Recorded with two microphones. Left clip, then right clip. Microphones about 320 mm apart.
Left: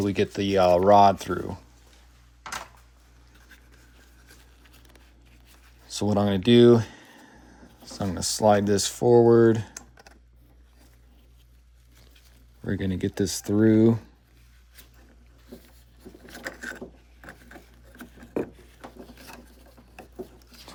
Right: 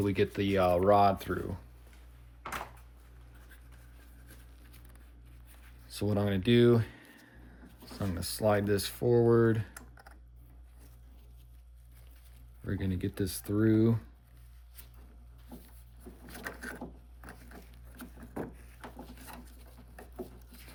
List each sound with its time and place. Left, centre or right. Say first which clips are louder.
0.0 s speech: left 5 dB; centre
5.8 s speech: left 8 dB; centre
12.6 s speech: left 8 dB; centre